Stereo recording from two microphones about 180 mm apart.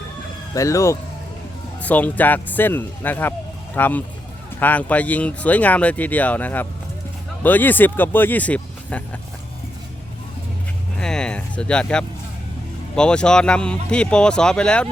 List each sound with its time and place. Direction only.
0.5 s speech: 15° left (ahead or behind)
10.9 s a sound: 5° left (ahead or behind)
13.0 s speech: 5° left (ahead or behind)